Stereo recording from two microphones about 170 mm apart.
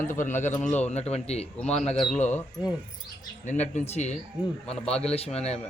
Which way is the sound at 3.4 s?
45° left (ahead or behind).